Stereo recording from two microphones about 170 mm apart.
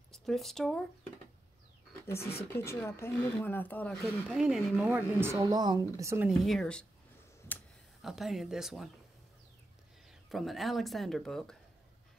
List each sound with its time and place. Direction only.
0.1 s speech: centre (ahead or behind)
2.0 s speech: 15° left (ahead or behind); by 4.9 s centre (ahead or behind)
4.9 s speech: 15° right (ahead or behind)
6.2 s speech: centre (ahead or behind)
8.0 s speech: centre (ahead or behind)
10.3 s speech: centre (ahead or behind)